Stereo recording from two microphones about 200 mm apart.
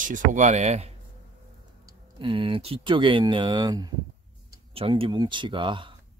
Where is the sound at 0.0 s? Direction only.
40° right (ahead or behind).